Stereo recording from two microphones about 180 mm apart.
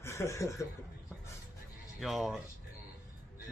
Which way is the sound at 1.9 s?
Centre (ahead or behind).